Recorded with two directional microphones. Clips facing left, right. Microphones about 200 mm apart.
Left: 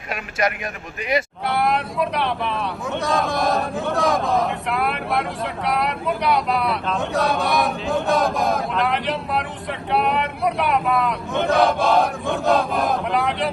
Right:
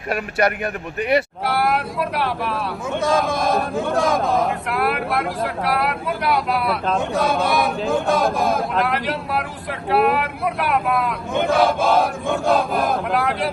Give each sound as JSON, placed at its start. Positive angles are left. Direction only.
{"t": 0.1, "sound": "speech", "side_deg": -60}
{"t": 1.5, "sound": "speech", "side_deg": 0}